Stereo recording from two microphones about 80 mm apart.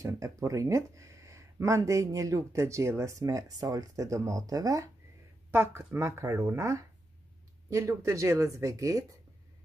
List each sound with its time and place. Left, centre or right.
0.0 s speech: right
5.5 s speech: right